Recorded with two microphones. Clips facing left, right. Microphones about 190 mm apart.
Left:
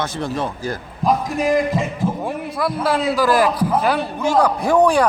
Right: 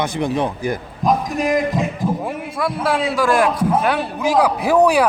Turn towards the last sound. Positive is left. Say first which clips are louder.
# right 1 dB
turn(degrees=-5)  # may be behind; listen again after turning